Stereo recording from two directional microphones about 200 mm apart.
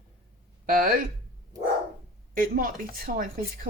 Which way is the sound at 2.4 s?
45° right (ahead or behind).